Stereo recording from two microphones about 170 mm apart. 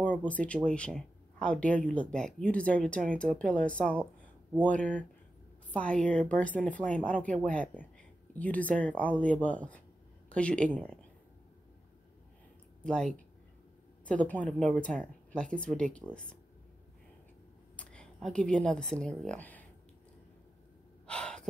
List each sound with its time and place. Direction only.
0.0 s speech: 10° left (ahead or behind)
4.2 s a sound: 10° left (ahead or behind)
5.7 s speech: 5° left (ahead or behind)
12.8 s speech: 5° left (ahead or behind)
17.7 s speech: 5° left (ahead or behind)
21.1 s gasp: 5° left (ahead or behind)